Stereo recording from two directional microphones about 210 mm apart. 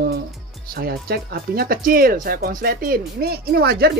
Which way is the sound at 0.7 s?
45° right (ahead or behind).